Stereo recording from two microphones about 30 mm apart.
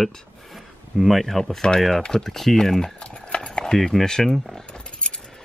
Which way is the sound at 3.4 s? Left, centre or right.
Left.